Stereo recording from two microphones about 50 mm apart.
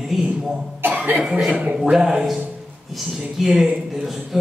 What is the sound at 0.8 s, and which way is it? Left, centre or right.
Cough, right.